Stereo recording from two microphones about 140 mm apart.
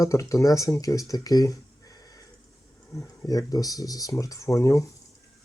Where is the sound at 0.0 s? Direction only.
25° left (ahead or behind).